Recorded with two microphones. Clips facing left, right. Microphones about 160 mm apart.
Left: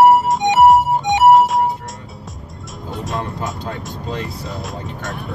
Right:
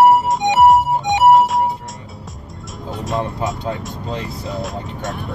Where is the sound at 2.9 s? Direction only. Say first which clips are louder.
Right 2 dB; centre (ahead or behind).